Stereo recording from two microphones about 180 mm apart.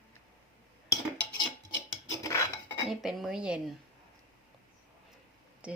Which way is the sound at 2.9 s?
Centre (ahead or behind).